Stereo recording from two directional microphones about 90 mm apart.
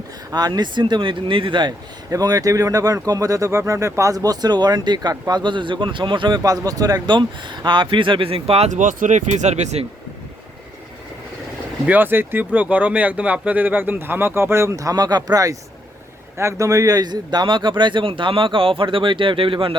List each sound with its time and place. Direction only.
0.3 s speech: 50° right (ahead or behind)
2.0 s speech: 40° right (ahead or behind); by 8.5 s 85° right
11.9 s speech: 20° right (ahead or behind); by 19.7 s 80° right